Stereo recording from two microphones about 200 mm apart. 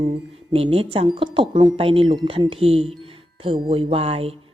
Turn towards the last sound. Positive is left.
turn(degrees=-30)  # may be behind; listen again after turning